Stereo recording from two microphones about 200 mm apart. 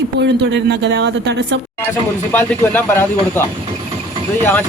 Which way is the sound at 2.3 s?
10° left (ahead or behind).